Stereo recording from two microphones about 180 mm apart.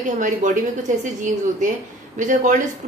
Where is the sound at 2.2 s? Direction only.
45° right (ahead or behind).